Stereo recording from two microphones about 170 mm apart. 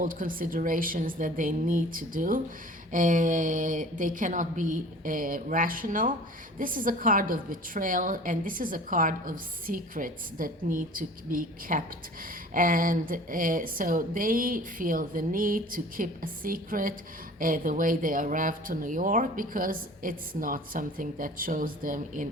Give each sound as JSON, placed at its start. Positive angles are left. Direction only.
{"t": 0.0, "sound": "a woman's voice", "side_deg": -55}